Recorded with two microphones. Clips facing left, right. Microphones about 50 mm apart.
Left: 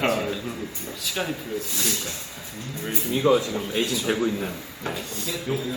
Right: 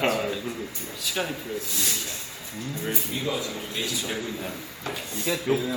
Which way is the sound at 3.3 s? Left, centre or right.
Left.